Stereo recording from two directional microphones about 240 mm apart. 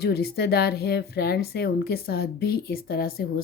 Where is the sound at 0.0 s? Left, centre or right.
Left.